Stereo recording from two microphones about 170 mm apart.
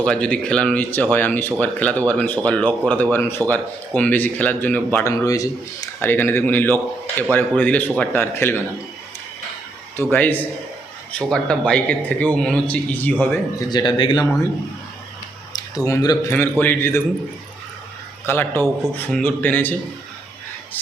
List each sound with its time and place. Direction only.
0.0 s speech: 5° left (ahead or behind)
10.0 s speech: 10° left (ahead or behind)
13.7 s speech: 25° left (ahead or behind)
15.5 s speech: 20° left (ahead or behind)
18.3 s speech: 10° left (ahead or behind)